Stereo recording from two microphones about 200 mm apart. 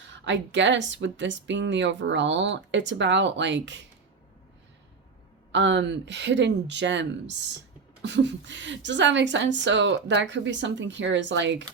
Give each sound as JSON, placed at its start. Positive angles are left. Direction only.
{"t": 0.3, "sound": "a woman's voice", "side_deg": -65}
{"t": 5.5, "sound": "a woman's voice", "side_deg": -65}